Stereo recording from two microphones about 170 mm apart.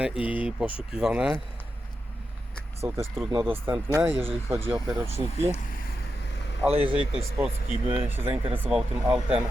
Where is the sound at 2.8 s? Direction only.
10° right (ahead or behind).